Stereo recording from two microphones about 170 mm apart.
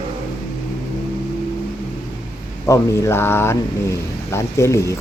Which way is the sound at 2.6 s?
15° left (ahead or behind).